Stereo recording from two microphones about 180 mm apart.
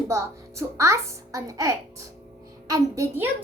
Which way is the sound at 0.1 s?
15° right (ahead or behind).